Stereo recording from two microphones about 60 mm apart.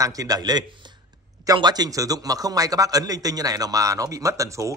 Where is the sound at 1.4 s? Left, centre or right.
Right.